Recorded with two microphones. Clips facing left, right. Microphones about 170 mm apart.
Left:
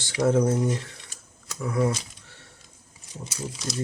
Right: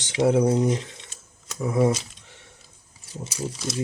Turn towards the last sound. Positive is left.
turn(degrees=0)  # may be behind; listen again after turning